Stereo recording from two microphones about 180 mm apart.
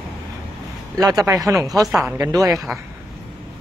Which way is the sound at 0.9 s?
20° right (ahead or behind).